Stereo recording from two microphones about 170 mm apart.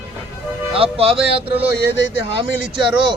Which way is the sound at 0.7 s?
35° right (ahead or behind).